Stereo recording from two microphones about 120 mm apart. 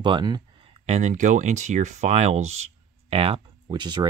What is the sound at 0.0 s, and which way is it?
Speech, 40° right (ahead or behind).